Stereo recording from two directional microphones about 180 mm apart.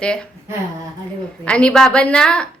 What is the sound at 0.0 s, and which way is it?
Speech, 5° left (ahead or behind).